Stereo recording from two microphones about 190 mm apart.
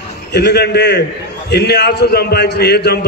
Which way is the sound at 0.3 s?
60° left (ahead or behind).